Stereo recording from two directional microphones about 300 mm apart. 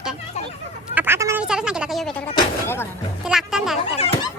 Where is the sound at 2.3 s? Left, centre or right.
Centre.